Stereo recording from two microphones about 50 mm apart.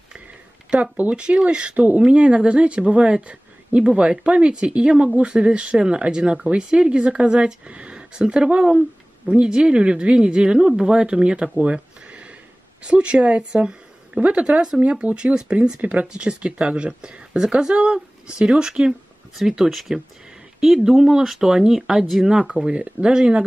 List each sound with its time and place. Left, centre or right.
1.1 s speech: centre
14.8 s speech: right
15.8 s speech: right; by 22.5 s centre
22.5 s speech: right